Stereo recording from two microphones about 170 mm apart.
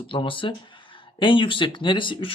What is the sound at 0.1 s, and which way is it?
Speech, 30° left (ahead or behind).